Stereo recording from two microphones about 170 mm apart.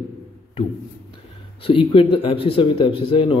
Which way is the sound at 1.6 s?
35° left (ahead or behind).